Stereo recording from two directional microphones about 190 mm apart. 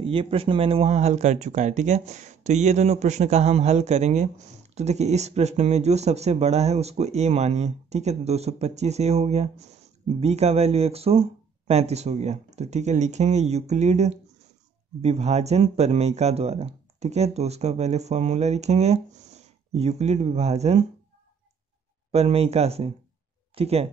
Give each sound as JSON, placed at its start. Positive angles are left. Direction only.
{"t": 0.0, "sound": "speech", "side_deg": -30}
{"t": 22.1, "sound": "speech", "side_deg": -35}